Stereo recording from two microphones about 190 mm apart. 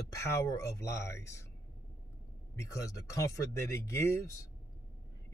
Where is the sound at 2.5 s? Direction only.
15° left (ahead or behind).